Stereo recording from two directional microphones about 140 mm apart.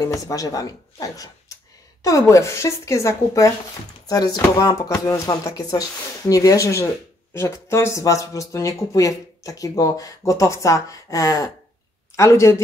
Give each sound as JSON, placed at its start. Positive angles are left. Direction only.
{"t": 0.0, "sound": "speech", "side_deg": 25}